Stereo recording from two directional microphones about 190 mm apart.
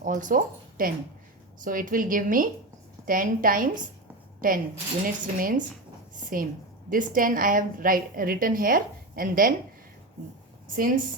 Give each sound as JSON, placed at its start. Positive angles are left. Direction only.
{"t": 0.0, "sound": "a woman's voice", "side_deg": -45}
{"t": 10.7, "sound": "a woman's voice", "side_deg": -45}